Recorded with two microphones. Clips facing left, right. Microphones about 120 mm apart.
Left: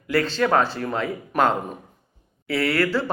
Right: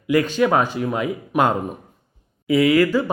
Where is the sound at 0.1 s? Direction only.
15° right (ahead or behind).